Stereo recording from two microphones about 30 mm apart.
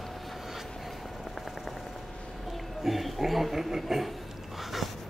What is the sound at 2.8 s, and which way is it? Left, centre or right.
Speech, centre.